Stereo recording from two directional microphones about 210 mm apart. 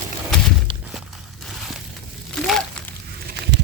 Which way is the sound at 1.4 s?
Centre (ahead or behind).